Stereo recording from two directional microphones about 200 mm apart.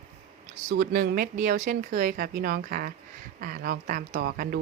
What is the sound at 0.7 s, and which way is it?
Speech, 45° right (ahead or behind).